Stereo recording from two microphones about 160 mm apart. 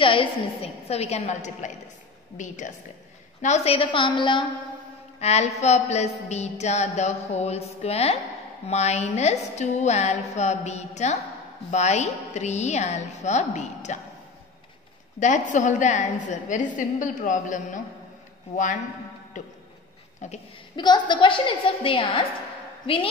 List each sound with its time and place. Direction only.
0.0 s a woman's voice: 35° left (ahead or behind); by 1.7 s 50° left (ahead or behind)
2.3 s music: 50° left (ahead or behind)
3.4 s a woman's voice: 45° left (ahead or behind)
5.2 s music: 45° left (ahead or behind)
15.1 s music: 50° left (ahead or behind)
19.4 s music: 50° left (ahead or behind)
20.7 s a woman's voice: 30° left (ahead or behind)